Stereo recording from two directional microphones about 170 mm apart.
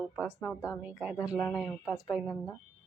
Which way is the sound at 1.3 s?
15° left (ahead or behind).